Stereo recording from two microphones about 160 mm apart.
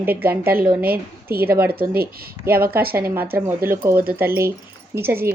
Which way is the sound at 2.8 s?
70° right (ahead or behind).